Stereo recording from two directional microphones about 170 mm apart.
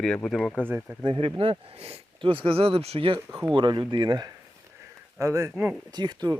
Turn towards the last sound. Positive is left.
turn(degrees=-25)  # may be behind; listen again after turning